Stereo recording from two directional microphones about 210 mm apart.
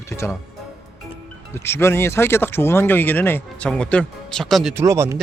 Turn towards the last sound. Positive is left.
turn(degrees=-15)  # may be behind; listen again after turning